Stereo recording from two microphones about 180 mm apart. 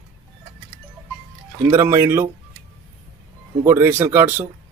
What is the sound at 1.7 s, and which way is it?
Speech, 15° right (ahead or behind).